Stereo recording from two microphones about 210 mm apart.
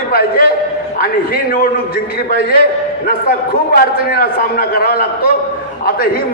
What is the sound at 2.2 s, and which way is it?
Speech, 50° left (ahead or behind).